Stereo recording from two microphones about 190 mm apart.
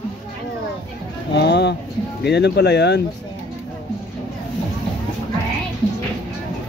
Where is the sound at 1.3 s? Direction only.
60° left (ahead or behind).